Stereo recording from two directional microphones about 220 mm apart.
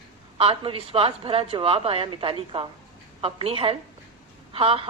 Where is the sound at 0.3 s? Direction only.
25° right (ahead or behind).